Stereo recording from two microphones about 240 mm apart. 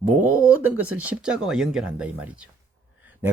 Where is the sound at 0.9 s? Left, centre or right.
Centre.